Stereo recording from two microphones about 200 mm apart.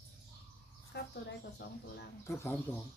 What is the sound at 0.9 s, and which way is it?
Bird, 55° left (ahead or behind).